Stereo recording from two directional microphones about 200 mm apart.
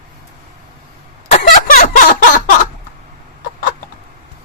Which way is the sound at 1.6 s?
45° left (ahead or behind).